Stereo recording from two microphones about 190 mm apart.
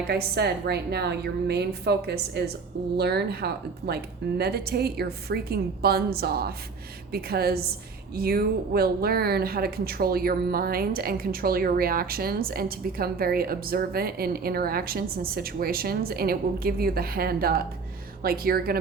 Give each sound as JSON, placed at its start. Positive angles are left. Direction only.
{"t": 0.1, "sound": "a woman's voice", "side_deg": -55}